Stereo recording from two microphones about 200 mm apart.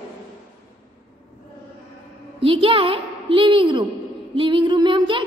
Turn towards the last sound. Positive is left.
turn(degrees=-25)  # may be behind; listen again after turning